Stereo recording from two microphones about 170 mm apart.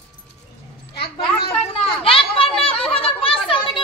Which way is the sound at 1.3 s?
35° left (ahead or behind).